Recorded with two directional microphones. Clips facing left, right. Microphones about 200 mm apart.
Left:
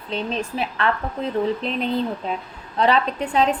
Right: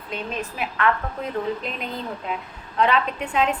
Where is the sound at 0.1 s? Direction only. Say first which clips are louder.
Left 4 dB; 30° left (ahead or behind).